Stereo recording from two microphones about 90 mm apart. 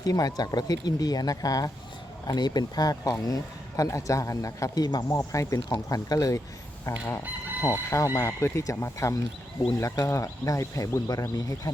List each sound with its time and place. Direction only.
0.0 s speech: 45° left (ahead or behind)
5.1 s speech: 35° left (ahead or behind)